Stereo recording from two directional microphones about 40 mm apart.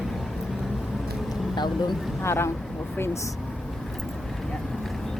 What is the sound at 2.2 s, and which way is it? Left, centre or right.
Speech, left.